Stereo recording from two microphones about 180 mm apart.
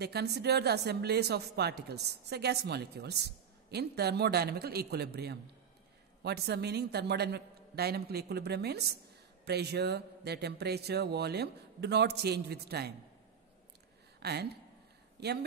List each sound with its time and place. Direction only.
0.0 s speech: 65° right (ahead or behind)
14.2 s speech: 65° right (ahead or behind)